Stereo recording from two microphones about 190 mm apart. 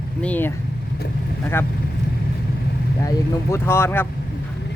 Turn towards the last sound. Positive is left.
turn(degrees=10)  # may be behind; listen again after turning